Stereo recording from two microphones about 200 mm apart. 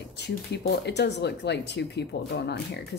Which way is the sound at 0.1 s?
55° left (ahead or behind).